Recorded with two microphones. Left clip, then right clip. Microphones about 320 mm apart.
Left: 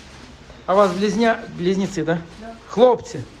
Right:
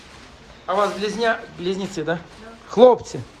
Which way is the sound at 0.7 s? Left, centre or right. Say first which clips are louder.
Left 4 dB; centre.